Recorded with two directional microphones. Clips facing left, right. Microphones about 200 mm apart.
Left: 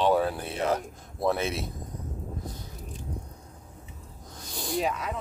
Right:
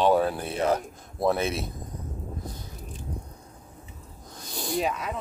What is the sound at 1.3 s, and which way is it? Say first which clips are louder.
Speech: right 2 dB; 40° right (ahead or behind).